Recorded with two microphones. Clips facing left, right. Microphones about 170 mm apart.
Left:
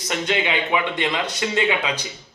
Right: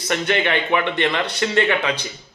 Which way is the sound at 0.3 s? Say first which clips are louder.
Right 2 dB; 10° left (ahead or behind).